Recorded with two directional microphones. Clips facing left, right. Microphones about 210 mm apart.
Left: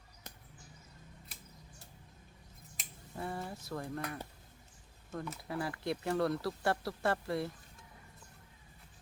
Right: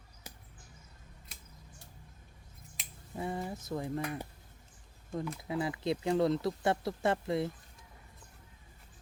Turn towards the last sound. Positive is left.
turn(degrees=-20)  # may be behind; listen again after turning